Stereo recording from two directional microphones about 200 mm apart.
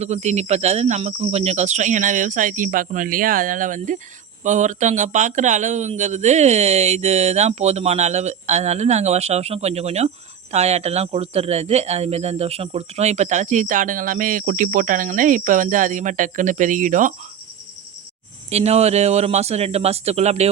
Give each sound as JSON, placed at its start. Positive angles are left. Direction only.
{"t": 0.0, "sound": "speech", "side_deg": -35}
{"t": 18.5, "sound": "speech", "side_deg": -30}